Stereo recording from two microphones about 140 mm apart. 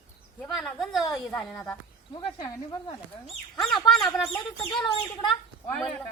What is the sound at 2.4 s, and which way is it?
Speech, 25° left (ahead or behind).